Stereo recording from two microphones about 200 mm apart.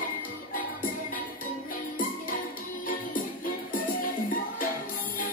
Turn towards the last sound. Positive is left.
turn(degrees=45)  # may be behind; listen again after turning